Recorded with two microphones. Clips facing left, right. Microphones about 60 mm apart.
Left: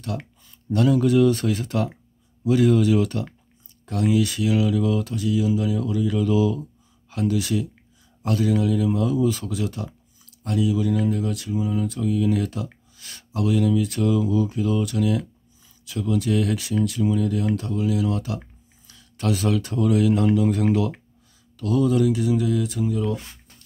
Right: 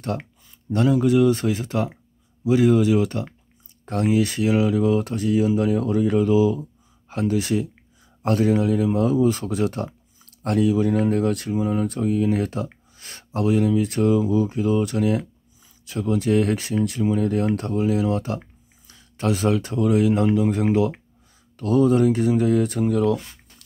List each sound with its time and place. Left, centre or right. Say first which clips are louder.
0.7 s speech: even; right
3.8 s speech: right 1 dB; right
6.2 s a sound: right 3 dB; right
7.2 s speech: right 1 dB; right
21.5 s speech: right 3 dB; right